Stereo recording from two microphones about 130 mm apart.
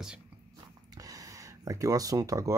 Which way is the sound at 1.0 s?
25° right (ahead or behind).